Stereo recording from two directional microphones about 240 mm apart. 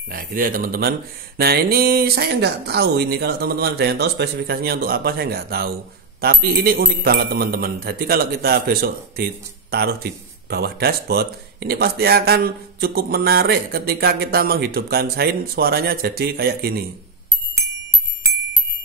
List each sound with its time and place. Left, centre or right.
0.1 s speech: right